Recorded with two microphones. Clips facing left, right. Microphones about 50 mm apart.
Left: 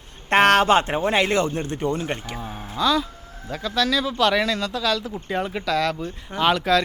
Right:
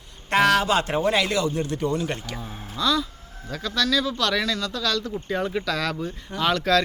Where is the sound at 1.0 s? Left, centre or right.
Left; by 6.1 s centre.